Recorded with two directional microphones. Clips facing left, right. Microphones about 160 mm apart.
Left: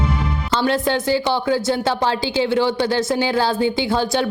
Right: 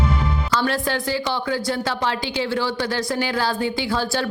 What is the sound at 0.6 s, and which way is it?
A woman's voice, 25° left (ahead or behind).